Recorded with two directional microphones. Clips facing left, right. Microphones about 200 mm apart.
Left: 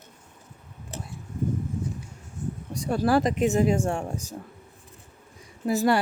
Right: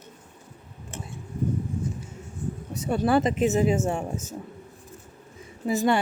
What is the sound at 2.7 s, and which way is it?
Speech, 5° right (ahead or behind).